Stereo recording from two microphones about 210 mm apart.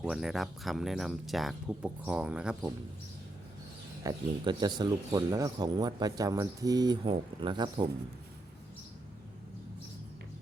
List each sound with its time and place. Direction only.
0.0 s speech: 5° right (ahead or behind)
4.0 s speech: 20° right (ahead or behind)